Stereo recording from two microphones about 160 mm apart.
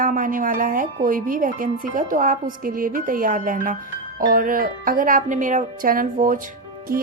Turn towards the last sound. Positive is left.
turn(degrees=-65)  # may be behind; listen again after turning